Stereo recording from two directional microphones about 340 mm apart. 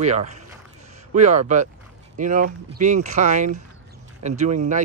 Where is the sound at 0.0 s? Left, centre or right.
Centre.